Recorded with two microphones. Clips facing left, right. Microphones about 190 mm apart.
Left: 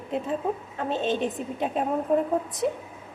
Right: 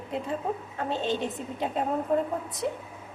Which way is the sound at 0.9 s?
20° left (ahead or behind).